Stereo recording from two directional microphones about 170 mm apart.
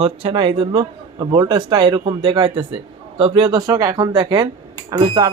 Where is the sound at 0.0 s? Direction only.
35° right (ahead or behind).